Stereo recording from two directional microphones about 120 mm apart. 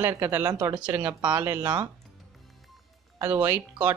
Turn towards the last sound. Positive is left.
turn(degrees=-15)  # may be behind; listen again after turning